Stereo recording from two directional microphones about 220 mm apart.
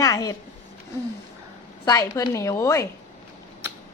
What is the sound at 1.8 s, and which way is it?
A woman's voice, 15° left (ahead or behind).